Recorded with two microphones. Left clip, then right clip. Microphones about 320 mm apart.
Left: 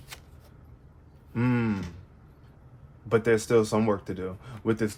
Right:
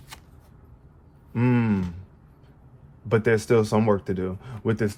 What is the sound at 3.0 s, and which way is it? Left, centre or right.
Speech, right.